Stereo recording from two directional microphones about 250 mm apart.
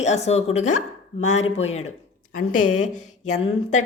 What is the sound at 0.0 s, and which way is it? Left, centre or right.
A woman's voice, left.